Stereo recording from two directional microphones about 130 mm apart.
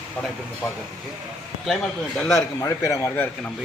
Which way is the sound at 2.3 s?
25° left (ahead or behind).